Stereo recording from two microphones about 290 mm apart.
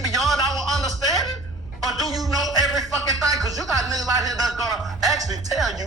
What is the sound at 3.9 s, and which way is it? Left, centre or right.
Speech, centre.